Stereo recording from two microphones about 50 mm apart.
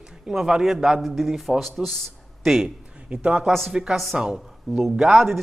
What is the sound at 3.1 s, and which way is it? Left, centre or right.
Speech, right.